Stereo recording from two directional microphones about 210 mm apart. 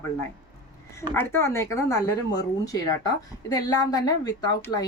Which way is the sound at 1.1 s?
10° left (ahead or behind).